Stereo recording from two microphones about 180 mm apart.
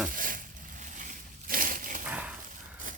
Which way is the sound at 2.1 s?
10° right (ahead or behind).